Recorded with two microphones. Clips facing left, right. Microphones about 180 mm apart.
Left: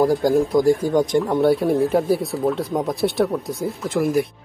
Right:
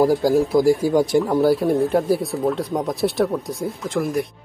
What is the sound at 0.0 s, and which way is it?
Speech, 5° right (ahead or behind).